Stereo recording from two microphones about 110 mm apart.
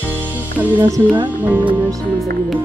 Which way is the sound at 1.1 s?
15° right (ahead or behind).